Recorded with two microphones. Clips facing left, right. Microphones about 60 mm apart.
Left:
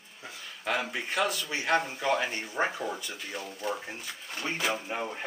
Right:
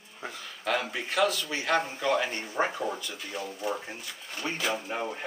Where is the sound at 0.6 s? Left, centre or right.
Centre.